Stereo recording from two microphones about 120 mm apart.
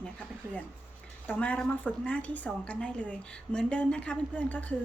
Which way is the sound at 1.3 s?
10° left (ahead or behind).